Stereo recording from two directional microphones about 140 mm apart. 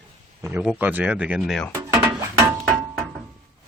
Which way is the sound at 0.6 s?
10° right (ahead or behind).